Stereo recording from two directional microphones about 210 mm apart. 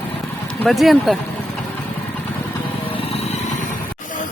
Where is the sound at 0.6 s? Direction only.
Centre (ahead or behind).